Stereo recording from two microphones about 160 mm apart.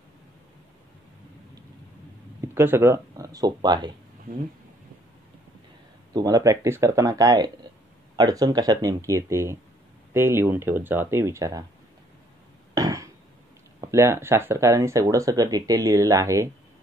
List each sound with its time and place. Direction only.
2.4 s speech: 15° right (ahead or behind)
6.1 s speech: 20° right (ahead or behind)
12.7 s burping: 20° right (ahead or behind)
13.7 s speech: 15° right (ahead or behind)